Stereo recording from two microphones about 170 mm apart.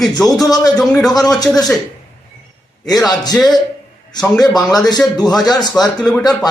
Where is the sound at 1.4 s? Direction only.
20° left (ahead or behind).